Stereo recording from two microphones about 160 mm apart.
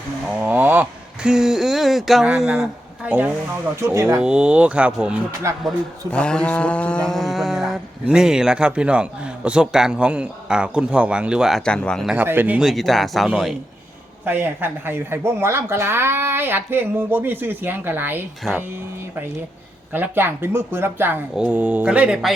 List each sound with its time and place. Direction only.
0.4 s speech: 10° right (ahead or behind)
5.6 s speech: 5° left (ahead or behind)
12.1 s speech: 10° right (ahead or behind)
14.3 s speech: 10° right (ahead or behind)
19.9 s speech: 15° right (ahead or behind)